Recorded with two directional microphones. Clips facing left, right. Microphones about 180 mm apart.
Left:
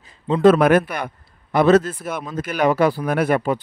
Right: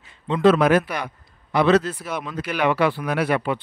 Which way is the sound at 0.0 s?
35° left (ahead or behind).